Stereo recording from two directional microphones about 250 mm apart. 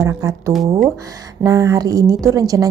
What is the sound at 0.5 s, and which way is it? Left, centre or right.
Speech, centre.